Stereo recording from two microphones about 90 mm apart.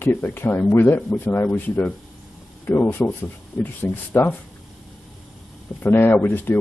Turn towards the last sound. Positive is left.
turn(degrees=20)  # may be behind; listen again after turning